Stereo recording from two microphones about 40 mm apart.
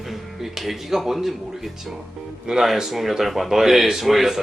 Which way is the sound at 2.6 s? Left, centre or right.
Centre.